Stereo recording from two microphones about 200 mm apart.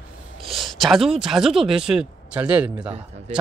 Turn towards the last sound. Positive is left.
turn(degrees=-30)  # may be behind; listen again after turning